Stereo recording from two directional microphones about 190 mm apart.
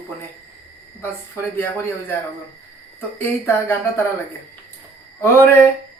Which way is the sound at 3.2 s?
10° left (ahead or behind).